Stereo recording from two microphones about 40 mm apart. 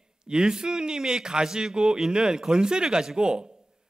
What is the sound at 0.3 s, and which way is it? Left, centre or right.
A man's voice, centre.